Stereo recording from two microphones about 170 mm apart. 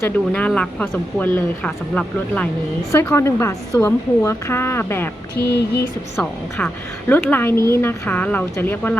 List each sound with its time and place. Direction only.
0.0 s speech: 10° left (ahead or behind)
5.4 s a sound: 75° left (ahead or behind)
6.6 s speech: 10° left (ahead or behind)